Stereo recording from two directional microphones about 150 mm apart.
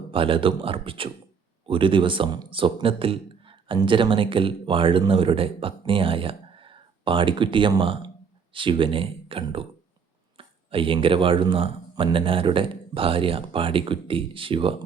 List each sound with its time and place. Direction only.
0.1 s speech: 35° right (ahead or behind)